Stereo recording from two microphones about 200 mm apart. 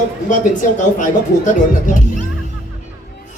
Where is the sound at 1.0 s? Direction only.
40° left (ahead or behind).